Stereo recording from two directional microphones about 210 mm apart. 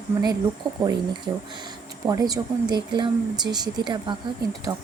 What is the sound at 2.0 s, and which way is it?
Speech, 15° right (ahead or behind).